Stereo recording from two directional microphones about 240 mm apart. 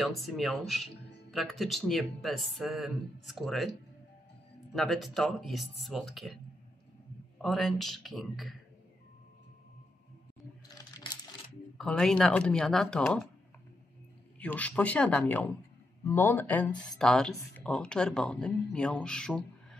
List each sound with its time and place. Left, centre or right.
0.0 s speech: centre
4.7 s speech: centre
7.4 s speech: centre
11.8 s speech: centre
14.4 s speech: centre